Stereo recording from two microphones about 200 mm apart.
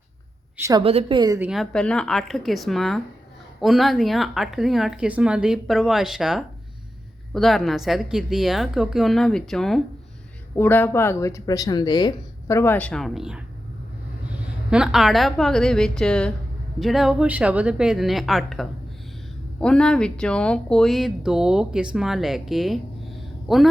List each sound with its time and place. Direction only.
0.5 s a woman's voice: 15° right (ahead or behind)
0.8 s a woman's voice: 25° right (ahead or behind)
1.4 s speech: centre (ahead or behind)
14.7 s speech: 5° right (ahead or behind)